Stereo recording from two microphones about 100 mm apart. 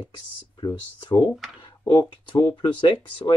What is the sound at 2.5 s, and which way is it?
Speech, 50° left (ahead or behind).